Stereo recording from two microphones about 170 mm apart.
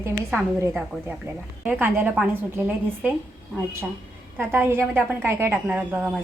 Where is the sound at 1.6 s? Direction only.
10° right (ahead or behind).